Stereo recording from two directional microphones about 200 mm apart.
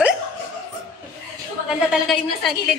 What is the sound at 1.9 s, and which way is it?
Speech, centre (ahead or behind).